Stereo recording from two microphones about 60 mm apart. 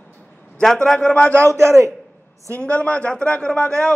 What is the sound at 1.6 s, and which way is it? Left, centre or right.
Speech, right.